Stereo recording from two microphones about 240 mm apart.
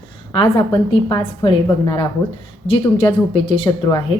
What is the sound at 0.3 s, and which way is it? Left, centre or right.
A woman's voice, centre.